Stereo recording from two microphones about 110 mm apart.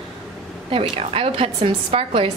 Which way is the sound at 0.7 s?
60° right (ahead or behind).